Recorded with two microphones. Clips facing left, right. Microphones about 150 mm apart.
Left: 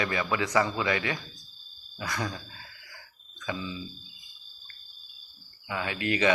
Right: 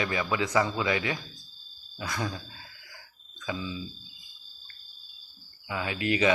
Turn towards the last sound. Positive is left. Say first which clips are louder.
# even
turn(degrees=-15)  # may be behind; listen again after turning